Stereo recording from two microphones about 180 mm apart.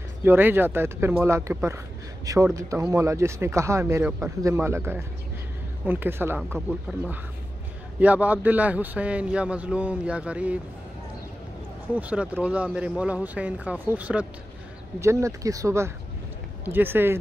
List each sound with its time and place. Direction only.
0.2 s speech: 10° right (ahead or behind)
11.9 s speech: 5° right (ahead or behind)